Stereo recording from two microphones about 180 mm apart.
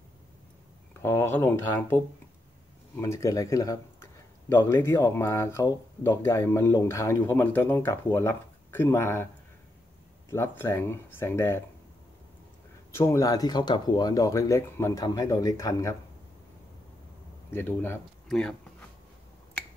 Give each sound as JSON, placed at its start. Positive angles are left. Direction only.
{"t": 1.0, "sound": "speech", "side_deg": 15}
{"t": 3.0, "sound": "speech", "side_deg": 15}
{"t": 10.3, "sound": "speech", "side_deg": 15}
{"t": 12.9, "sound": "speech", "side_deg": 15}
{"t": 17.5, "sound": "speech", "side_deg": 10}
{"t": 18.3, "sound": "a sound", "side_deg": 5}